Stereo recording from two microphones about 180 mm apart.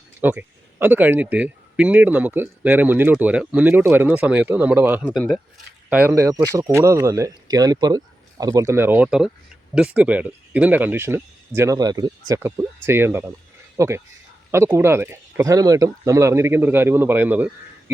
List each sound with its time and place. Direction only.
0.2 s speech: 10° right (ahead or behind)
5.0 s speech: 5° left (ahead or behind)
5.9 s speech: 10° right (ahead or behind)